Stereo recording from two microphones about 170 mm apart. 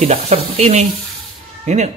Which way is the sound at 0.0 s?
40° right (ahead or behind).